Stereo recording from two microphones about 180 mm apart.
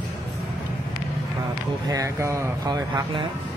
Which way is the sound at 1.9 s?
15° right (ahead or behind).